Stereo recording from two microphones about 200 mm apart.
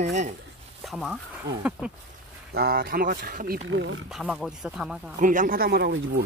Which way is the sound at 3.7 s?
70° right (ahead or behind).